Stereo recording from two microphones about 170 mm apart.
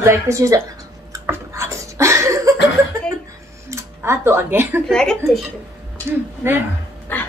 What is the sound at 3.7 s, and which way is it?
Speech, 15° right (ahead or behind).